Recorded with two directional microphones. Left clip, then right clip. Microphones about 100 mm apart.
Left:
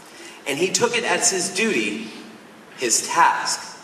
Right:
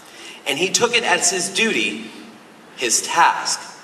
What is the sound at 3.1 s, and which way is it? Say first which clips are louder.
Speech: right 1 dB; 20° right (ahead or behind).